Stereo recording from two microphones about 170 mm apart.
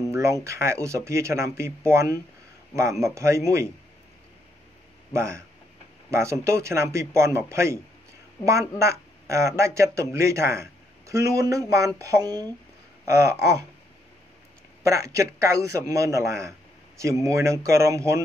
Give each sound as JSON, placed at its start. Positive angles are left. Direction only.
{"t": 0.1, "sound": "a man's voice", "side_deg": -15}
{"t": 5.1, "sound": "a man's voice", "side_deg": -15}
{"t": 13.0, "sound": "a sound", "side_deg": -20}
{"t": 14.8, "sound": "a man's voice", "side_deg": -20}